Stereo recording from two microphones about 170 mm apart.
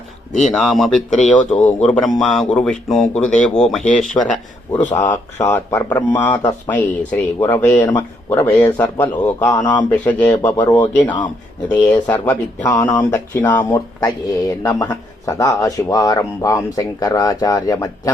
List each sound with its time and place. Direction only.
0.4 s speech: centre (ahead or behind)
4.8 s speech: 45° left (ahead or behind)
5.0 s speech: 20° left (ahead or behind)
11.7 s speech: 20° left (ahead or behind)